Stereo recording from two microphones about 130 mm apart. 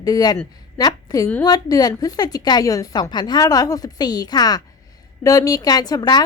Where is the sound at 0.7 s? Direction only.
30° left (ahead or behind).